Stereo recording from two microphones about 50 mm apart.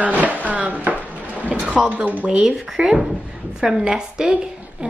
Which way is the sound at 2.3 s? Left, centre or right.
Centre.